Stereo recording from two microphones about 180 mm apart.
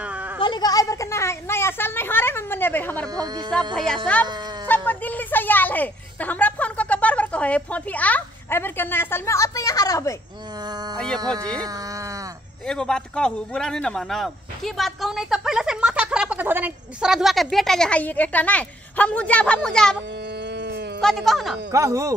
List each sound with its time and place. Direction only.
0.0 s a sound: 5° right (ahead or behind)
0.4 s speech: 25° left (ahead or behind)
3.2 s speech: 25° right (ahead or behind)
3.7 s a man's voice: 5° left (ahead or behind); by 10.1 s 20° left (ahead or behind)
12.6 s a man's voice: 5° left (ahead or behind)
20.5 s a sound: 65° right (ahead or behind)
21.0 s a man's voice: centre (ahead or behind)
21.7 s speech: 15° right (ahead or behind)